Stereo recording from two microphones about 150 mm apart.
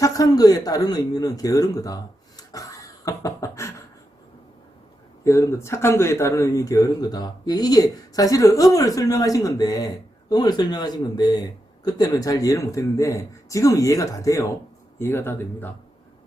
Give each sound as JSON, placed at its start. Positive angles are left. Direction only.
{"t": 0.0, "sound": "speech", "side_deg": 25}
{"t": 2.5, "sound": "beatboxing", "side_deg": 20}
{"t": 5.2, "sound": "speech", "side_deg": 20}